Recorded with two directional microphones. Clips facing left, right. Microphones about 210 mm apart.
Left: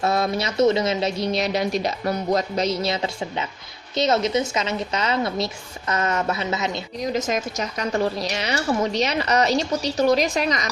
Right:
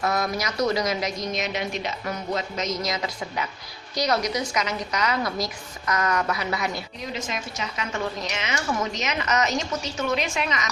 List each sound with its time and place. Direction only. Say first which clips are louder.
0.0 s a woman's voice: left 4 dB; 30° left (ahead or behind)
7.0 s a woman's voice: left 10 dB; 45° left (ahead or behind)